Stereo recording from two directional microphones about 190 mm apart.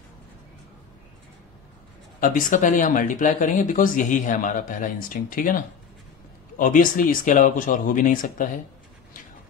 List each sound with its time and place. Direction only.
2.1 s speech: 45° left (ahead or behind)